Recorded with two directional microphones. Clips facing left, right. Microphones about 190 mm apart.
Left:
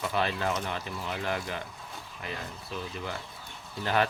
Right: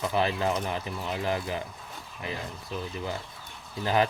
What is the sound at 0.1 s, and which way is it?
Speech, 15° right (ahead or behind).